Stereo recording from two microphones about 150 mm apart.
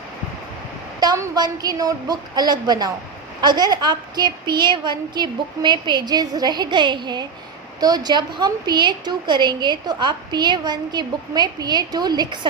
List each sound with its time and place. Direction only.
0.9 s a woman's voice: 25° right (ahead or behind)